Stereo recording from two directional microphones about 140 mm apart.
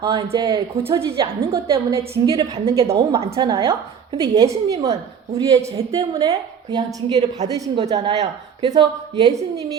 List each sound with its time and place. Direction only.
0.0 s a woman's voice: 30° right (ahead or behind)
0.8 s a woman's voice: 40° right (ahead or behind)
1.9 s a woman's voice: 20° right (ahead or behind)
2.3 s a woman's voice: 40° right (ahead or behind)
3.3 s a woman's voice: 35° right (ahead or behind)
5.4 s a woman's voice: 25° right (ahead or behind)
7.8 s a woman's voice: 50° right (ahead or behind)
8.6 s a woman's voice: 35° right (ahead or behind)